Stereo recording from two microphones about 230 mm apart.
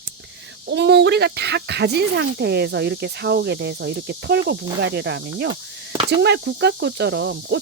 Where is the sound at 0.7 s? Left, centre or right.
Right.